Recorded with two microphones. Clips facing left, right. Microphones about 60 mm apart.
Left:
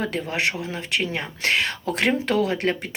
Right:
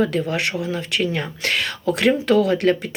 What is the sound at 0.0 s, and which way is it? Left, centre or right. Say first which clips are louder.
Speech: right 4 dB; left.